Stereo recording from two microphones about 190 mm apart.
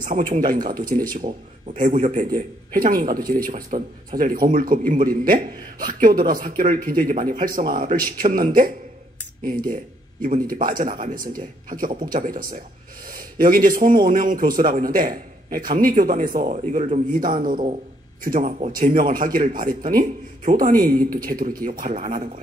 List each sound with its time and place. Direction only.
0.0 s speech: 45° right (ahead or behind)